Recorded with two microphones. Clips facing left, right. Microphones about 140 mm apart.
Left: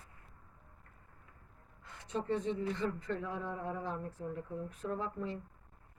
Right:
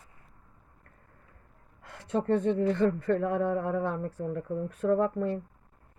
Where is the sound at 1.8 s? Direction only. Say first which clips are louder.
Right 9 dB; 65° right (ahead or behind).